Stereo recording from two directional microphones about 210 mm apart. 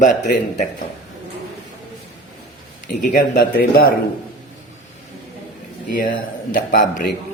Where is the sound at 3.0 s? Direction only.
40° left (ahead or behind).